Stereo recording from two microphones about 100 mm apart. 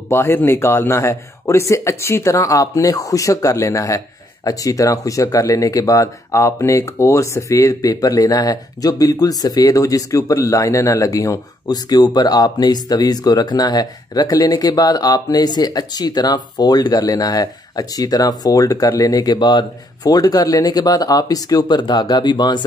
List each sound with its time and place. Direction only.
0.1 s speech: 25° left (ahead or behind); by 22.6 s 45° left (ahead or behind)